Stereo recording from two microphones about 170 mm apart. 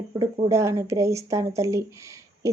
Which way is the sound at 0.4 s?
15° right (ahead or behind).